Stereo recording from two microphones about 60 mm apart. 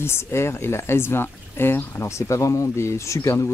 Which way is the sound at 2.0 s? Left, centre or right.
Left.